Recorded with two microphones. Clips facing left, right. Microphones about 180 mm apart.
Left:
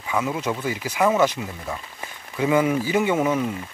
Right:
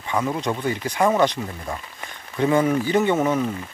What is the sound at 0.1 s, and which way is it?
Speech, 5° left (ahead or behind).